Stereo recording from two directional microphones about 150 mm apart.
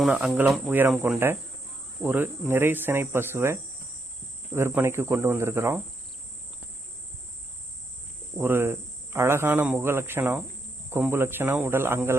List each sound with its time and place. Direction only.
0.0 s speech: 5° right (ahead or behind)
8.4 s speech: 15° right (ahead or behind)